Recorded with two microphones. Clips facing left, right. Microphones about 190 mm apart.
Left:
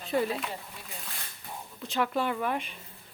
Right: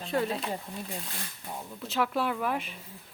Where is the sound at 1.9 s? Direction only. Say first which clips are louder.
Even; centre (ahead or behind).